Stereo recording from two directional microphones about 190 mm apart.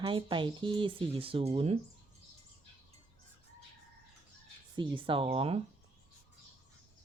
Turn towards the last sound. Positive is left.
turn(degrees=-30)  # may be behind; listen again after turning